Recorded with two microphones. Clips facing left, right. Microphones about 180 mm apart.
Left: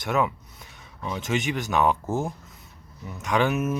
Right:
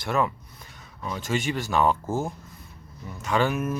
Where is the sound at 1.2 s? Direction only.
20° left (ahead or behind).